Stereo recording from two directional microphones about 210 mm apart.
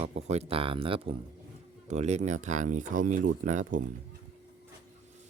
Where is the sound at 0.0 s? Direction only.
30° right (ahead or behind).